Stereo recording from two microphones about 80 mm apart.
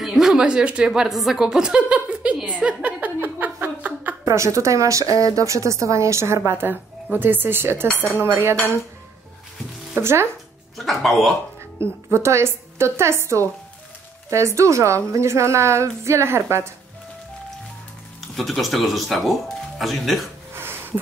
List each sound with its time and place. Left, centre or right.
0.0 s a woman's voice: centre
2.4 s a sound: centre
4.3 s a woman's voice: right
6.7 s speech: right
9.9 s a woman's voice: right
10.8 s speech: centre
11.8 s a woman's voice: right
18.3 s speech: centre
20.5 s a sound: right